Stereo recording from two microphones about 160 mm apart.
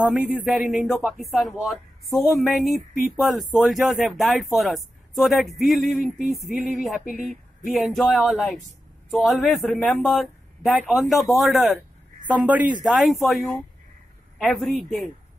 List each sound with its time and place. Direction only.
0.1 s speech: centre (ahead or behind)
14.4 s speech: centre (ahead or behind)